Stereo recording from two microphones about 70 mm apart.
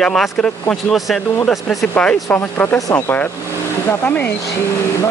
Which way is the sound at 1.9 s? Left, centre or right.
Left.